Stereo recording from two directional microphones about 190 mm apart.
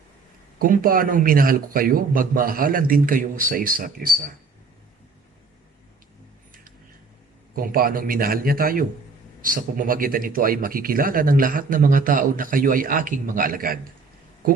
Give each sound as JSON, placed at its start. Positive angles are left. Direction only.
{"t": 0.6, "sound": "speech", "side_deg": -45}
{"t": 7.5, "sound": "speech", "side_deg": -50}